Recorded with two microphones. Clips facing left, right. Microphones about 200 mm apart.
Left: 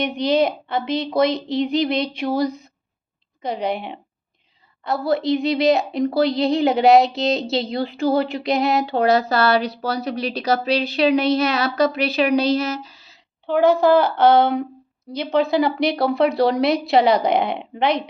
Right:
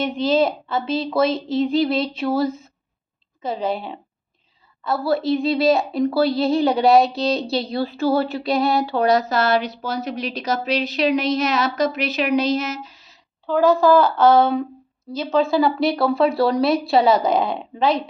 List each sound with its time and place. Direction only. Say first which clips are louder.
0.0 s a woman's voice: even; 15° left (ahead or behind)
4.9 s a woman's voice: even; 20° left (ahead or behind)
13.5 s speech: even; 20° left (ahead or behind)